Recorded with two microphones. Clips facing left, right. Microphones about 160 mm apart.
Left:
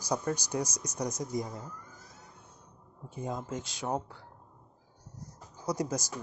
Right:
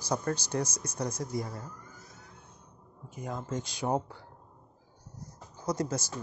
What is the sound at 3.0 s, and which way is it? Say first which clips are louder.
Speech: left 2 dB; 25° left (ahead or behind).